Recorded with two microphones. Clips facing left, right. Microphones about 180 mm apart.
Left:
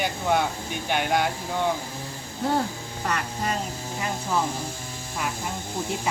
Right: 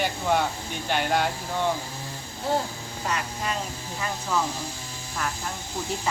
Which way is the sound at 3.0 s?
50° left (ahead or behind).